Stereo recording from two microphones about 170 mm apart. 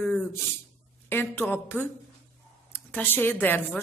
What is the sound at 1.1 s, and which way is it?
Speech, 15° left (ahead or behind).